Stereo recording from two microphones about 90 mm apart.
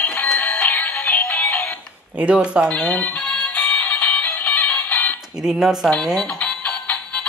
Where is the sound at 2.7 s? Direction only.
15° left (ahead or behind).